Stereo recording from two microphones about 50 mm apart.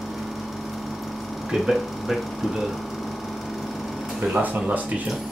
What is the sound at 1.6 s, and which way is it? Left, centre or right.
Speech, centre.